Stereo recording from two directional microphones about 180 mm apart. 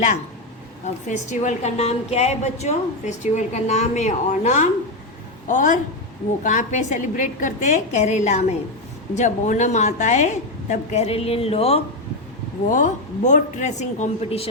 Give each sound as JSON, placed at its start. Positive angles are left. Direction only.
{"t": 0.9, "sound": "a woman's voice", "side_deg": 40}
{"t": 12.6, "sound": "a woman's voice", "side_deg": 45}